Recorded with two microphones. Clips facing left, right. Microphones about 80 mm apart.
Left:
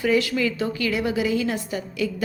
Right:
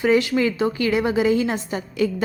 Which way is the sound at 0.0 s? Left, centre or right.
Right.